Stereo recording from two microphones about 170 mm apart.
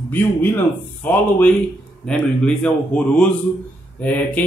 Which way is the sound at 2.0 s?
5° left (ahead or behind).